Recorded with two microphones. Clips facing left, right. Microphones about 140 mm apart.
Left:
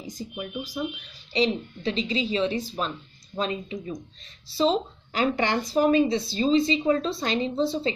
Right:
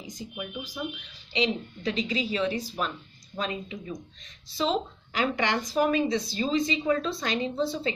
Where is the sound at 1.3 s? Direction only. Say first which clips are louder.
Left 3 dB; 30° left (ahead or behind).